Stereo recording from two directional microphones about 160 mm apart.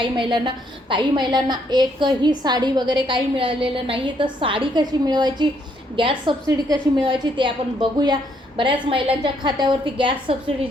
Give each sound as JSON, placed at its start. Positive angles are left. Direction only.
{"t": 0.2, "sound": "a woman's voice", "side_deg": -30}